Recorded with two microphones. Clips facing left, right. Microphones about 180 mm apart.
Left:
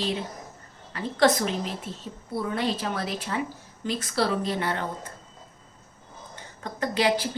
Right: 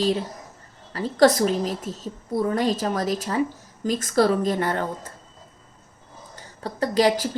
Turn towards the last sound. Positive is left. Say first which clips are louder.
# right 4 dB
turn(degrees=-40)  # may be behind; listen again after turning